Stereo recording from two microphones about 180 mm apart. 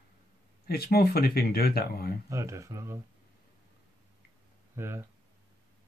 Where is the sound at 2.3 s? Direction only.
15° right (ahead or behind).